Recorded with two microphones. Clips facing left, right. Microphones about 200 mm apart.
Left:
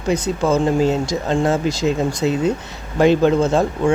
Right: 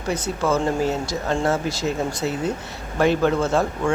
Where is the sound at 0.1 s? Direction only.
15° left (ahead or behind).